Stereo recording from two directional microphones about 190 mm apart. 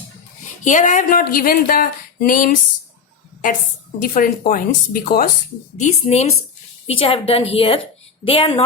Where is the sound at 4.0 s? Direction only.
50° left (ahead or behind).